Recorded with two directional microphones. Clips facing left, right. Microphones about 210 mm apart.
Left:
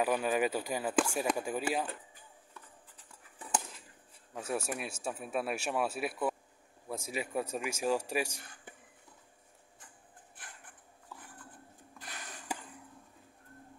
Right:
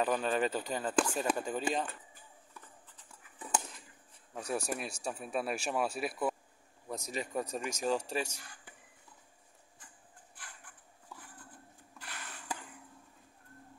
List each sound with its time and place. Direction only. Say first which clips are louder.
0.0 s speech: left 1 dB; 10° left (ahead or behind)
4.4 s speech: even; 5° left (ahead or behind)
12.0 s sniff: left 1 dB; 15° left (ahead or behind)